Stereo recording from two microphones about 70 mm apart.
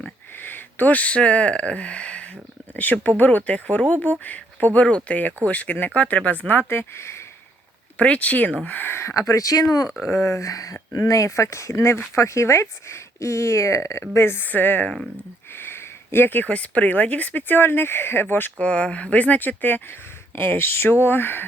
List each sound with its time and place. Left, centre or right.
0.3 s speech: left
6.5 s speech: left
7.9 s speech: centre; by 9.1 s left
9.1 s speech: left
10.1 s speech: left
18.6 s speech: centre